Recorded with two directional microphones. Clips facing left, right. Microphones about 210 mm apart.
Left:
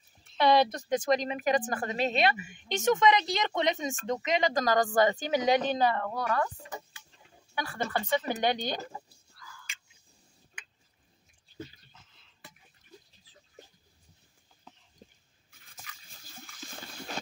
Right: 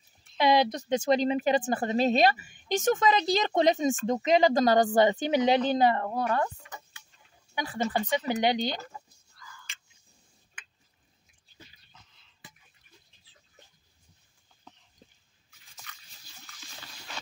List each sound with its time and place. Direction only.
0.4 s a woman's voice: 15° right (ahead or behind); by 6.5 s 30° right (ahead or behind)
7.5 s speech: 20° right (ahead or behind)
9.3 s whispering: centre (ahead or behind)
16.3 s water: 50° left (ahead or behind)